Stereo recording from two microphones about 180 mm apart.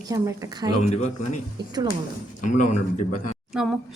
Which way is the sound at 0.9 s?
40° left (ahead or behind).